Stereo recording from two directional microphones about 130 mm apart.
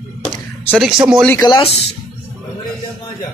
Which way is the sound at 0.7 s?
5° right (ahead or behind).